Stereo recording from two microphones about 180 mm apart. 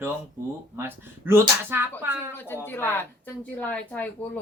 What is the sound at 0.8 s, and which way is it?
Speech, 10° right (ahead or behind).